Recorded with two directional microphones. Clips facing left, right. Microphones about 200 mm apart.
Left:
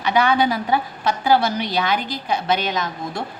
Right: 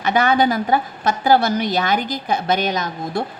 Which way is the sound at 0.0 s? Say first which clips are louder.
Right 1 dB; 45° right (ahead or behind).